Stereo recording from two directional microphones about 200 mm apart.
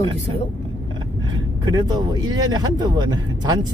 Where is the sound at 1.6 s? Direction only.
20° right (ahead or behind).